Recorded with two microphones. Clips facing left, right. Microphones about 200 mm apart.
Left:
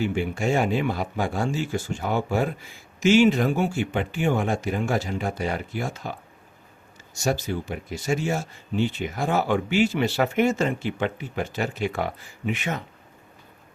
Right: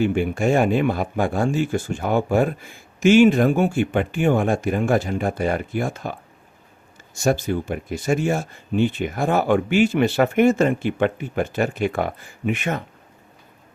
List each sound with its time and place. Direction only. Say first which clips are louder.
0.0 s speech: right 5 dB; 55° right (ahead or behind)